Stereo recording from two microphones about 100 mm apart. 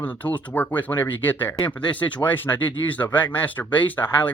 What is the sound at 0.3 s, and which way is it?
Speech, 20° left (ahead or behind).